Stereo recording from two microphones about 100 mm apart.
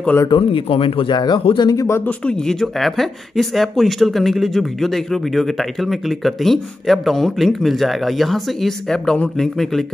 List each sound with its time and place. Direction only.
0.3 s speech: 60° left (ahead or behind); by 1.9 s 40° left (ahead or behind)
1.9 s speech: 25° left (ahead or behind)
2.2 s speech: 5° left (ahead or behind)